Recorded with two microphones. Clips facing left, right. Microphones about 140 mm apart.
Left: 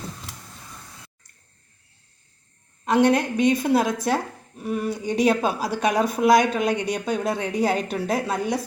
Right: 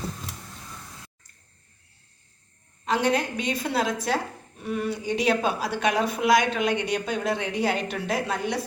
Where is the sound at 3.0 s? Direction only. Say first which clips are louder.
Left 8 dB; 50° left (ahead or behind).